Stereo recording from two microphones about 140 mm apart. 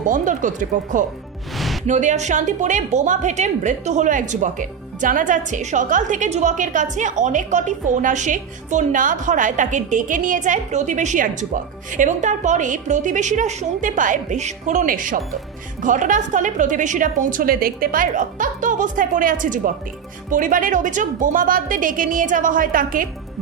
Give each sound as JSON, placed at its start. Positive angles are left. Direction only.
{"t": 0.1, "sound": "a woman's voice", "side_deg": -65}
{"t": 1.5, "sound": "music", "side_deg": 0}
{"t": 1.9, "sound": "a woman's voice", "side_deg": -60}